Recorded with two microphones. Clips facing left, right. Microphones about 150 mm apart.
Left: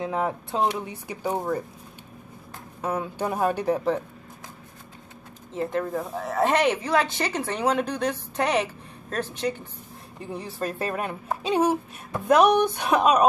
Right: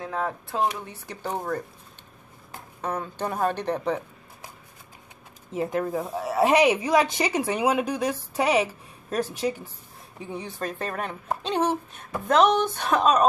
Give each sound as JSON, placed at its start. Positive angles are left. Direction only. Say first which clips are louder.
{"t": 0.0, "sound": "speech", "louder": "left 3 dB", "side_deg": 15}
{"t": 2.8, "sound": "speech", "louder": "left 2 dB", "side_deg": 10}
{"t": 5.5, "sound": "speech", "louder": "right 1 dB", "side_deg": -10}